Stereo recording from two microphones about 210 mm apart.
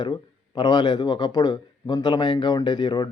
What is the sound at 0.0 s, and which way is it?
Speech, 20° left (ahead or behind).